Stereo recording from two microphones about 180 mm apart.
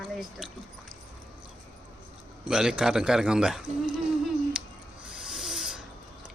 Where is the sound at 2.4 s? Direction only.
5° right (ahead or behind).